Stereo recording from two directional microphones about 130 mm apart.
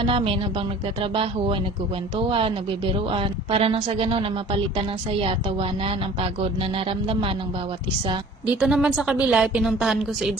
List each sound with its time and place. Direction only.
0.1 s a woman's voice: 45° right (ahead or behind)
8.6 s speech: 5° right (ahead or behind)